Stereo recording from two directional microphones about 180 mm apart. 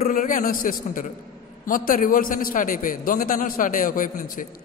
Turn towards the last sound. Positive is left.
turn(degrees=50)  # may be behind; listen again after turning